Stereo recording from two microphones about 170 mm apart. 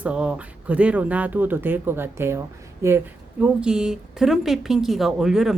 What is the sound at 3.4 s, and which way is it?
A woman's voice, 5° right (ahead or behind).